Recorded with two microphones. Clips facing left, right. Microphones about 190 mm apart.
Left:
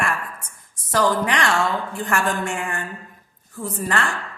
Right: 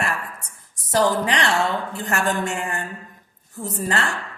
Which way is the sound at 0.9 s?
40° right (ahead or behind).